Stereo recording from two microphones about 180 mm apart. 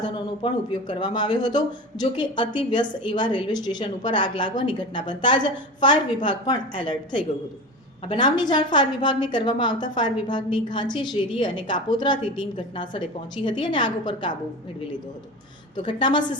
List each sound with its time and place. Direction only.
0.1 s a woman's voice: 25° left (ahead or behind)
15.9 s a woman's voice: 25° left (ahead or behind)